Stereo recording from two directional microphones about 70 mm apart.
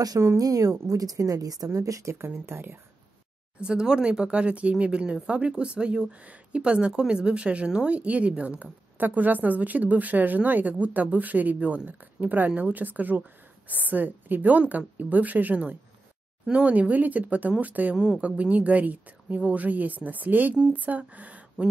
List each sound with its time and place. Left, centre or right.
0.4 s speech: right
2.1 s speech: right
3.6 s speech: centre